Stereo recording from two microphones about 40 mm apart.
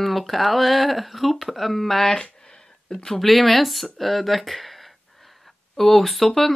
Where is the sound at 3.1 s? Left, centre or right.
Centre.